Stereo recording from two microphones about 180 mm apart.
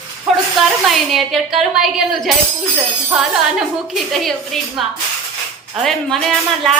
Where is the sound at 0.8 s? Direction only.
Centre (ahead or behind).